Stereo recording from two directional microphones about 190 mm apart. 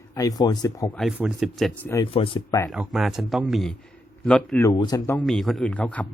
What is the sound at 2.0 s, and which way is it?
Speech, 30° left (ahead or behind).